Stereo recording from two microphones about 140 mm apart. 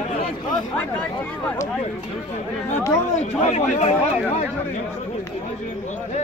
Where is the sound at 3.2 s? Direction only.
55° left (ahead or behind).